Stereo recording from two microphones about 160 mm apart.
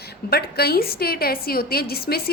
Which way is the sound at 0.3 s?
75° left (ahead or behind).